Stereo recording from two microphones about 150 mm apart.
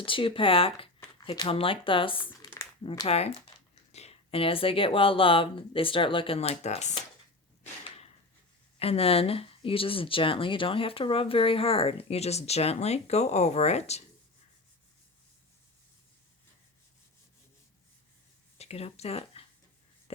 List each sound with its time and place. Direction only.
0.0 s speech: 35° left (ahead or behind)
2.2 s crumpling: 30° left (ahead or behind)
3.1 s speech: 45° left (ahead or behind)
8.8 s speech: 40° left (ahead or behind)
18.5 s speech: 45° left (ahead or behind)
20.1 s a sound: 40° left (ahead or behind)